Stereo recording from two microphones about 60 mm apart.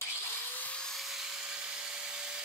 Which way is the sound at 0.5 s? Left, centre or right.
Left.